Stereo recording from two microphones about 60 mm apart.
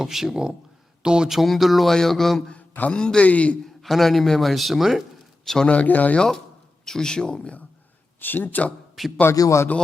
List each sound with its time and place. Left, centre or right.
0.0 s speech: centre
2.5 s mantra: left
3.0 s speech: centre
3.2 s speech: left
3.7 s speech: centre
5.6 s speech: left
6.1 s speech: centre
8.2 s speech: left
9.0 s speech: centre
9.3 s speech: left